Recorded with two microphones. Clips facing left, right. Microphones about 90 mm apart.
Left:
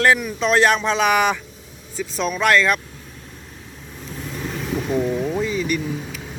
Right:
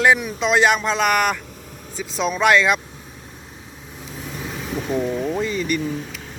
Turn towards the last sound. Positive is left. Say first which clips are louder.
# right 1 dB
turn(degrees=0)  # may be behind; listen again after turning